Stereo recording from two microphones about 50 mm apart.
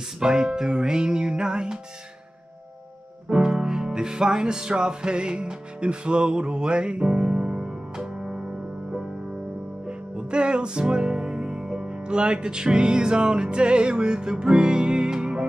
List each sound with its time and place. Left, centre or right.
0.2 s music: centre
3.3 s music: centre
9.8 s music: centre